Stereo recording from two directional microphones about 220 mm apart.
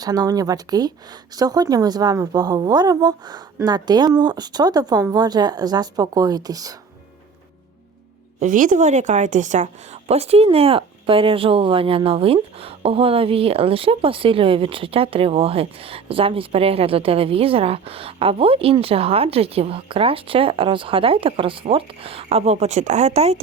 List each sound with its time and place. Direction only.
0.0 s a woman's voice: 15° right (ahead or behind)
8.4 s a woman's voice: 35° right (ahead or behind)